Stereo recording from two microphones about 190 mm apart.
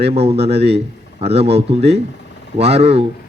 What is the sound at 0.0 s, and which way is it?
Speech, 30° right (ahead or behind).